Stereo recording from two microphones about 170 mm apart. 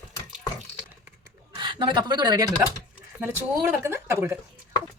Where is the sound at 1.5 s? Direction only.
25° right (ahead or behind).